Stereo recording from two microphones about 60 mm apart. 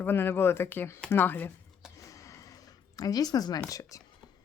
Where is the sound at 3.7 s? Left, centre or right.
Left.